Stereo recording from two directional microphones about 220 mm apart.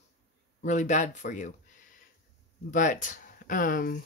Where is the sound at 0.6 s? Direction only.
35° left (ahead or behind).